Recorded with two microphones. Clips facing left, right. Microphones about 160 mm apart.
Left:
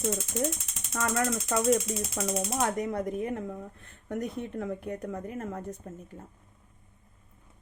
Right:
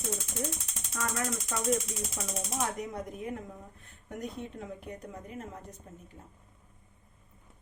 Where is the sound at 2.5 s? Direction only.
65° left (ahead or behind).